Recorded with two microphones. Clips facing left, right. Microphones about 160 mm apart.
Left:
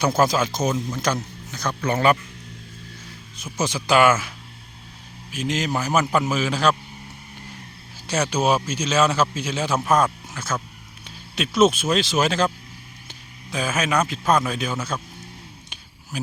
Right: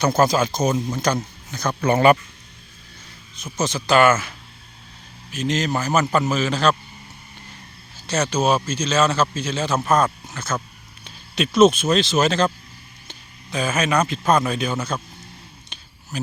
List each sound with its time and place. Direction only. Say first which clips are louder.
0.0 s a man's voice: right 2 dB; 5° left (ahead or behind)
1.9 s speech: right 4 dB; 55° right (ahead or behind)
3.3 s a man's voice: right 1 dB; 10° left (ahead or behind)
8.0 s a man's voice: right 1 dB; 10° left (ahead or behind)
16.1 s speech: right 2 dB; 10° left (ahead or behind)